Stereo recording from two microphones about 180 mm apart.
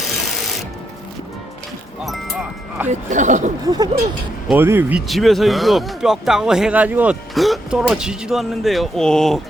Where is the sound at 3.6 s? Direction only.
20° right (ahead or behind).